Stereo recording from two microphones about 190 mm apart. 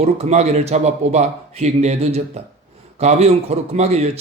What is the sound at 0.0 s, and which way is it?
Speech, 35° right (ahead or behind).